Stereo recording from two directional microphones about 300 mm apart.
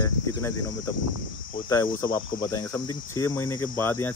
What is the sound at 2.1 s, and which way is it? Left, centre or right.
Cricket, centre.